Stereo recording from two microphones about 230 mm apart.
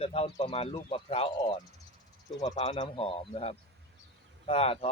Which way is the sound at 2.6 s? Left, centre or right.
Left.